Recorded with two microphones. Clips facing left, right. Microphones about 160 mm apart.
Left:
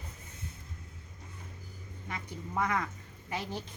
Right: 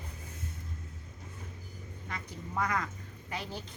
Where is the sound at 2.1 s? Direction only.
20° left (ahead or behind).